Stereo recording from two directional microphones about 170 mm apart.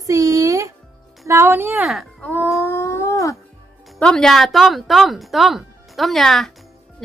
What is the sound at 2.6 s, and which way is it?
Wail, 15° left (ahead or behind).